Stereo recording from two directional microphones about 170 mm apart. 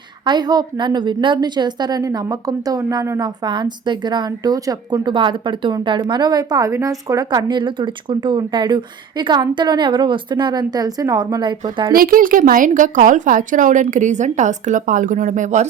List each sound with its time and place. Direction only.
0.3 s a woman's voice: 25° right (ahead or behind)
11.9 s a woman's voice: 55° right (ahead or behind)